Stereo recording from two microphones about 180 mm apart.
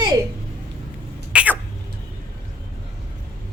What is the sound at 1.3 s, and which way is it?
Speech, 10° right (ahead or behind).